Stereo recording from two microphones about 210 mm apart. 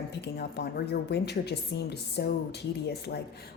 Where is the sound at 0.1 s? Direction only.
50° left (ahead or behind).